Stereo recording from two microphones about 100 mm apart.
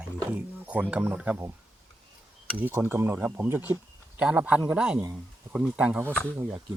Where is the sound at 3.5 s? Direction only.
20° right (ahead or behind).